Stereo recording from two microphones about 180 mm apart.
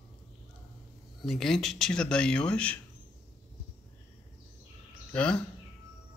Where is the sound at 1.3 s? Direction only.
Centre (ahead or behind).